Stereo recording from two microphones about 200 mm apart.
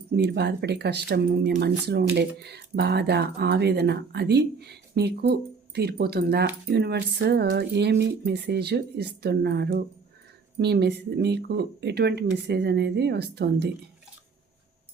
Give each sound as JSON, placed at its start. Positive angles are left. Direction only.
{"t": 0.1, "sound": "speech", "side_deg": -55}